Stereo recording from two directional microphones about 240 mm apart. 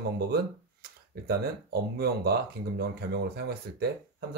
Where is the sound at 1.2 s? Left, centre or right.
Right.